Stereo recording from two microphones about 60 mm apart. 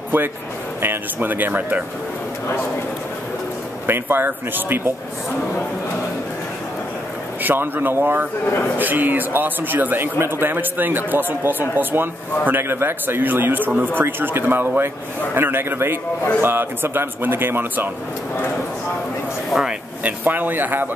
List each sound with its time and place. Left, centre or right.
0.8 s a man's voice: right
3.8 s a man's voice: right
7.4 s a man's voice: right
19.5 s speech: centre
20.0 s a man's voice: right